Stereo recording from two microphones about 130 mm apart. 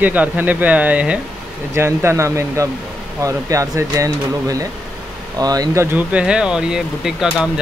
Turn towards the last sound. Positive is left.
turn(degrees=-5)  # may be behind; listen again after turning